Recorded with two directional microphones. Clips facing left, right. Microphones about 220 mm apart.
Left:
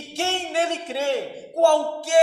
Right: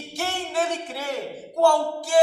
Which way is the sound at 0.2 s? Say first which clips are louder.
Left 2 dB; 25° left (ahead or behind).